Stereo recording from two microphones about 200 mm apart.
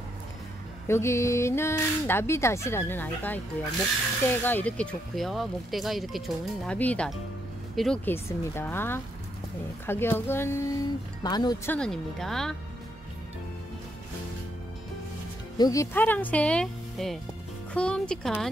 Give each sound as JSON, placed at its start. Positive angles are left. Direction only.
{"t": 0.8, "sound": "speech", "side_deg": 15}
{"t": 11.7, "sound": "speech", "side_deg": 5}
{"t": 15.5, "sound": "speech", "side_deg": 20}